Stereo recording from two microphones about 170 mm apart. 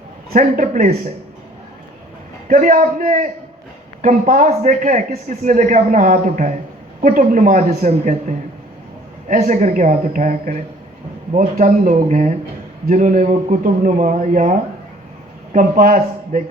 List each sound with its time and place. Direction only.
0.3 s speech: 50° right (ahead or behind)
2.5 s speech: 55° right (ahead or behind)
9.3 s speech: 55° right (ahead or behind)